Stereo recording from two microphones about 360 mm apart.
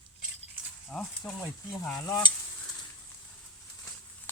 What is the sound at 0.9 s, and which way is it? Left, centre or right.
Speech, centre.